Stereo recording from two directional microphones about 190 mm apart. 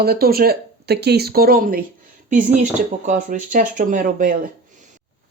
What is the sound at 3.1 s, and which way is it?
Speech, 45° right (ahead or behind).